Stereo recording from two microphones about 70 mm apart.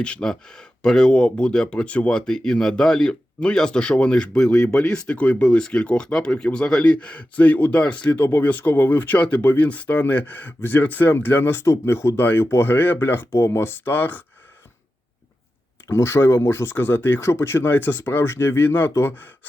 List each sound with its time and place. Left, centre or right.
0.0 s speech: centre
15.9 s speech: left